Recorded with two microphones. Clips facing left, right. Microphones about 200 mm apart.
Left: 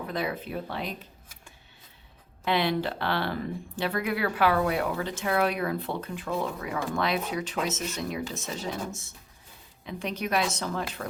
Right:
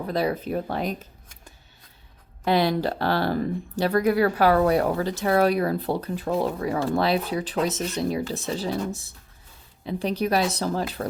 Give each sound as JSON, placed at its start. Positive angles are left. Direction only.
{"t": 0.1, "sound": "speech", "side_deg": -35}
{"t": 2.4, "sound": "speech", "side_deg": -40}